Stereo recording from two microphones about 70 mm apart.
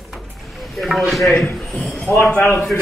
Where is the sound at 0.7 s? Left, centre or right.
Centre.